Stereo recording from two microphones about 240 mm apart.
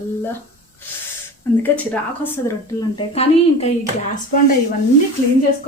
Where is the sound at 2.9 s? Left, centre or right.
Left.